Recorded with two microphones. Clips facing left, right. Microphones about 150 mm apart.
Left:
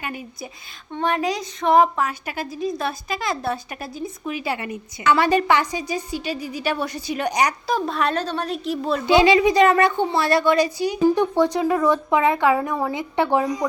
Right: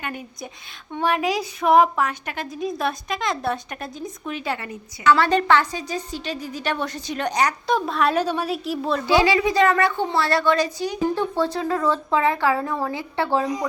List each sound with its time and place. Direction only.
0.9 s a woman's voice: 5° right (ahead or behind)
7.7 s a woman's voice: centre (ahead or behind)
8.1 s a woman's voice: 10° right (ahead or behind)
9.0 s a woman's voice: 20° left (ahead or behind)